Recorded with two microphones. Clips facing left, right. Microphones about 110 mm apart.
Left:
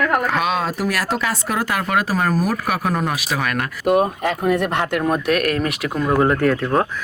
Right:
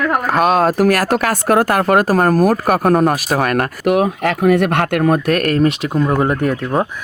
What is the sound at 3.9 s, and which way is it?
Speech, 80° right.